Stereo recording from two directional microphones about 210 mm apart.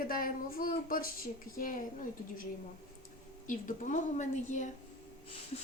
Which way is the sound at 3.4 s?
40° left (ahead or behind).